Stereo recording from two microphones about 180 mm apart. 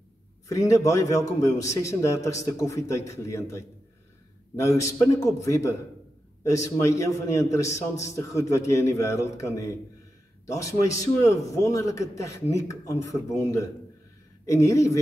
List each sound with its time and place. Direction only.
0.5 s a man's voice: 15° left (ahead or behind)